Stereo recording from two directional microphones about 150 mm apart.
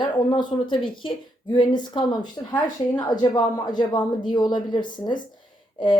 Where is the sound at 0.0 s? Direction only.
30° left (ahead or behind).